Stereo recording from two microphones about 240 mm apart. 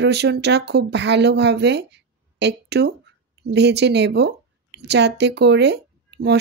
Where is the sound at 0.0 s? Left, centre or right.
Right.